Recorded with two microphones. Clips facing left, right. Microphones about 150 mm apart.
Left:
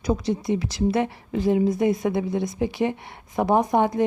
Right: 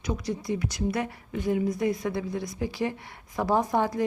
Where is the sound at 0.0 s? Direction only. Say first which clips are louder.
Left 7 dB; 35° left (ahead or behind).